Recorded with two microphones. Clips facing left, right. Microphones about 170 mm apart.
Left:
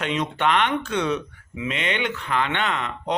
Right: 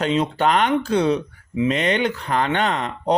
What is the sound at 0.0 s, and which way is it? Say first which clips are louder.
Speech: right 4 dB; 35° right (ahead or behind).